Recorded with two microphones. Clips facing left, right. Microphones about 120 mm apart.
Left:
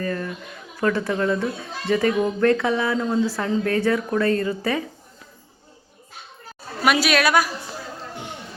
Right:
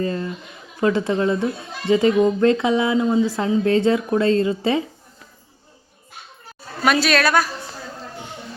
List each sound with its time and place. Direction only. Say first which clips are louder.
0.0 s a woman's voice: right 3 dB; 20° right (ahead or behind)
6.8 s a woman's voice: right 1 dB; 10° left (ahead or behind)